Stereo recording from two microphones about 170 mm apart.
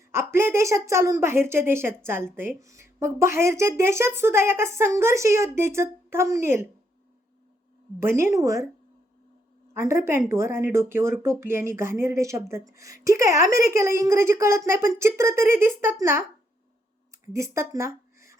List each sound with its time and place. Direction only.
0.1 s a woman's voice: 15° right (ahead or behind)
7.9 s a woman's voice: 15° right (ahead or behind)
9.7 s a woman's voice: 15° right (ahead or behind)
17.3 s speech: 15° right (ahead or behind)